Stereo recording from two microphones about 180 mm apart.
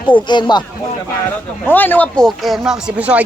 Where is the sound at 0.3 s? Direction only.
25° left (ahead or behind).